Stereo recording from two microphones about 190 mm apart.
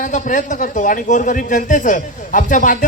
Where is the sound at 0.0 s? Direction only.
40° left (ahead or behind).